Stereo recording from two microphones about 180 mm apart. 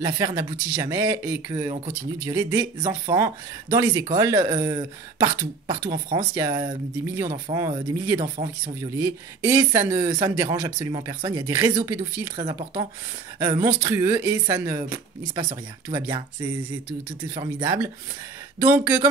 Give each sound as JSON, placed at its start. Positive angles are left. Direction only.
{"t": 0.0, "sound": "speech", "side_deg": -20}
{"t": 13.8, "sound": "speech", "side_deg": -15}
{"t": 17.4, "sound": "speech", "side_deg": -20}